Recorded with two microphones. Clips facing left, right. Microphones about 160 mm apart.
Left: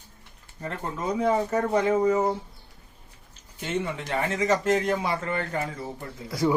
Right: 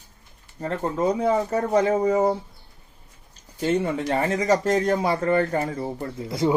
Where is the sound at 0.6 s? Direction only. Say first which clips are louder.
Right 7 dB; 30° right (ahead or behind).